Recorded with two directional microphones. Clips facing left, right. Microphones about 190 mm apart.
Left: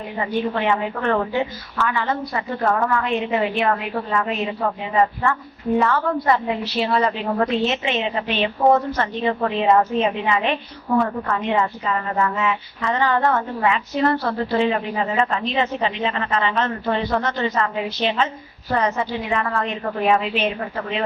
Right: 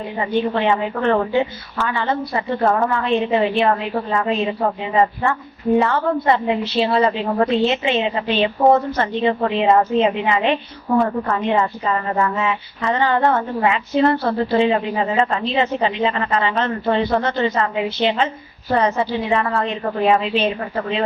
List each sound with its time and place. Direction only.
0.5 s a woman's voice: 30° right (ahead or behind)